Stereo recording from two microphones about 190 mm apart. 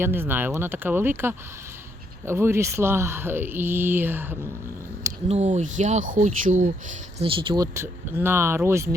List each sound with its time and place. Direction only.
0.0 s speech: 10° right (ahead or behind)
5.3 s speech: 40° right (ahead or behind)
7.2 s speech: 30° right (ahead or behind)